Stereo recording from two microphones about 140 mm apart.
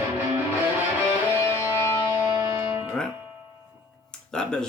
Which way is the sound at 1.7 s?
15° left (ahead or behind).